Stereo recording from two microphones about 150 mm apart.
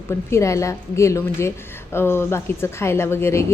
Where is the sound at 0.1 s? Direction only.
20° left (ahead or behind).